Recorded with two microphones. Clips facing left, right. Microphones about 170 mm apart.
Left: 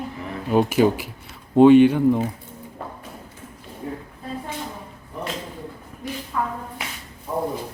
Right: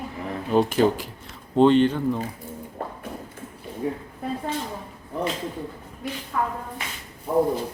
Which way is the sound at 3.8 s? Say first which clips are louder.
Right 4 dB; 75° right (ahead or behind).